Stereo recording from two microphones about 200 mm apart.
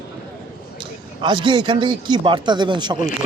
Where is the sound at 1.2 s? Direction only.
25° right (ahead or behind).